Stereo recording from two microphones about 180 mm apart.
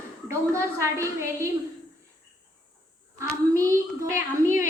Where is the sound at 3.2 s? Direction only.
15° right (ahead or behind).